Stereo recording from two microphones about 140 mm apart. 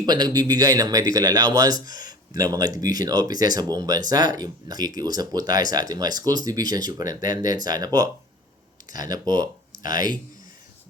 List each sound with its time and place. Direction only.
0.0 s speech: 30° right (ahead or behind)
9.8 s speech: 75° left (ahead or behind)